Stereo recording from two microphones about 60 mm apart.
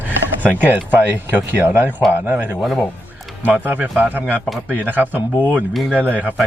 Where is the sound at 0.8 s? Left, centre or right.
Right.